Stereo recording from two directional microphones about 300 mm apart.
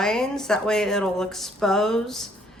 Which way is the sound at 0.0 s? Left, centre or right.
Centre.